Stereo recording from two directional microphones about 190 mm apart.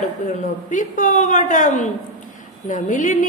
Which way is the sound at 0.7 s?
40° left (ahead or behind).